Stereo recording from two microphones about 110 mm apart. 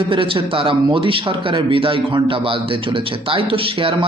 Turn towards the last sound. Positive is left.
turn(degrees=-55)  # may be behind; listen again after turning